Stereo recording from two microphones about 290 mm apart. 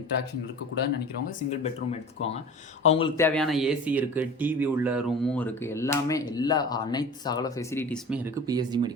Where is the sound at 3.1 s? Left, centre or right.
Centre.